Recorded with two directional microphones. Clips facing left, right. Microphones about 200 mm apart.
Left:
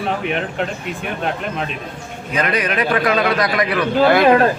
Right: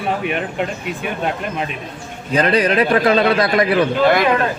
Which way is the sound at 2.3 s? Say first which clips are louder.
Right 5 dB; 30° right (ahead or behind).